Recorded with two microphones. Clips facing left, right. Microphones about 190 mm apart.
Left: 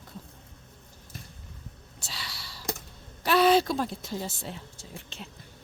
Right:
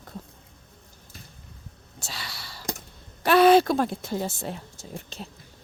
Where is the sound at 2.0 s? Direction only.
50° right (ahead or behind).